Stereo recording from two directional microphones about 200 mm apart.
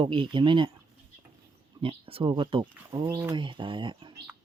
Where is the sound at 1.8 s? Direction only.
30° right (ahead or behind).